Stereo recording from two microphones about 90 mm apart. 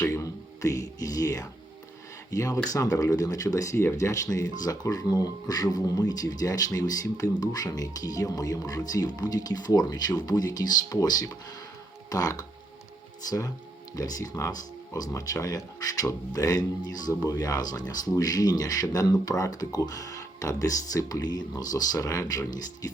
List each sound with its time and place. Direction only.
0.0 s a sound: 35° left (ahead or behind)
2.3 s speech: 35° left (ahead or behind)
13.9 s speech: 40° left (ahead or behind)